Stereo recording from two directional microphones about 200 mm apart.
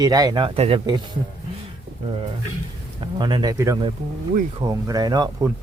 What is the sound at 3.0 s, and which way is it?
Speech, 25° right (ahead or behind).